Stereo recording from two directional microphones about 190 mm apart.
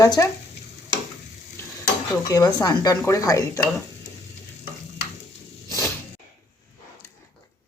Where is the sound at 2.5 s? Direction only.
20° left (ahead or behind).